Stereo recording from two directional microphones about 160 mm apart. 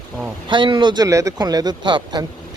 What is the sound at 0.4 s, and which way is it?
Speech, 30° right (ahead or behind).